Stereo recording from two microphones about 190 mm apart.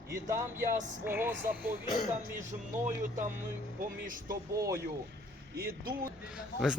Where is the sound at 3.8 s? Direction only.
45° right (ahead or behind).